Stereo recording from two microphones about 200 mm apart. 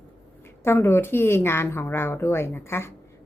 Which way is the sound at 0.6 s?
10° left (ahead or behind).